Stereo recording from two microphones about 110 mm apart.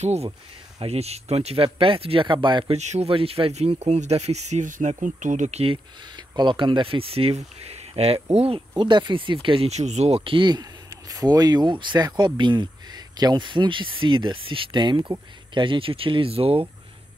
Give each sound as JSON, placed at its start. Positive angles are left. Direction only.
{"t": 0.0, "sound": "speech", "side_deg": -80}
{"t": 0.7, "sound": "speech", "side_deg": -70}
{"t": 2.7, "sound": "speech", "side_deg": -80}
{"t": 3.1, "sound": "speech", "side_deg": -55}
{"t": 3.5, "sound": "speech", "side_deg": -80}
{"t": 5.4, "sound": "speech", "side_deg": -75}
{"t": 6.1, "sound": "speech", "side_deg": -45}
{"t": 8.5, "sound": "speech", "side_deg": -45}
{"t": 9.7, "sound": "speech", "side_deg": -90}